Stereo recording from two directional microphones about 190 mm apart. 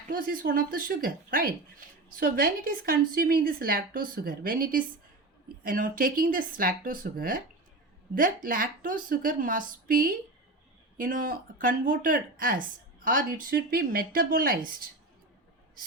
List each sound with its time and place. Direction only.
0.1 s speech: 45° right (ahead or behind)